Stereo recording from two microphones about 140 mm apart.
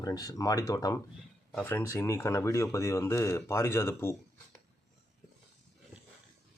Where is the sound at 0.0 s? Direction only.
25° left (ahead or behind).